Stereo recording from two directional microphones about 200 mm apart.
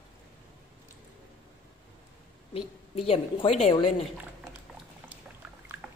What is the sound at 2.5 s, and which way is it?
A woman's voice, 30° left (ahead or behind).